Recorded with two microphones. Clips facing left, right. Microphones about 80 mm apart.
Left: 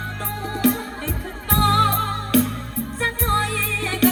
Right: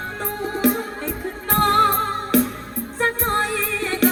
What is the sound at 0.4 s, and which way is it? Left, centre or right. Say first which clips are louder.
Music: even; centre.